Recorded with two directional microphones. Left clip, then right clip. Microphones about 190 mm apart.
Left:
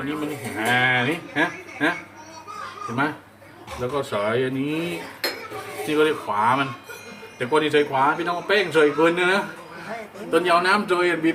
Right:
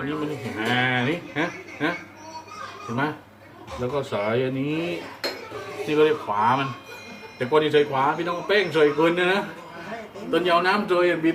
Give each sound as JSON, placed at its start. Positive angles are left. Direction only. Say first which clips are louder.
{"t": 0.0, "sound": "a man's voice", "louder": "even", "side_deg": 5}
{"t": 3.9, "sound": "a man's voice", "louder": "left 2 dB", "side_deg": 5}